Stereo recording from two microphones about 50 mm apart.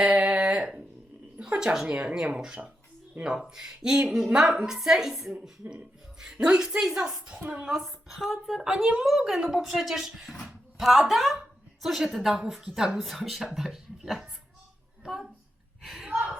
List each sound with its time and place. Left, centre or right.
0.0 s a sound: right
1.4 s a woman's voice: centre
3.2 s speech: right
3.5 s a woman's voice: centre
5.3 s a woman's voice: right
7.7 s a woman's voice: centre
15.8 s a sound: centre